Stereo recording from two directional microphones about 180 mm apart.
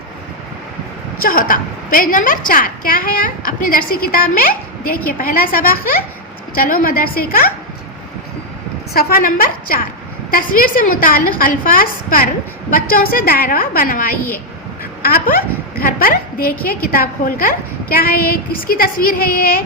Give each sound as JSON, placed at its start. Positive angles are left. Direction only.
{"t": 1.2, "sound": "a woman's voice", "side_deg": 50}
{"t": 8.9, "sound": "a woman's voice", "side_deg": 55}